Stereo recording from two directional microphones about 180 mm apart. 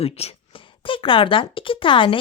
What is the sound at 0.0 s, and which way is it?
Speech, 35° left (ahead or behind).